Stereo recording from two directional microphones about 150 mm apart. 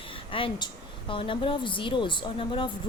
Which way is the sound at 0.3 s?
35° left (ahead or behind).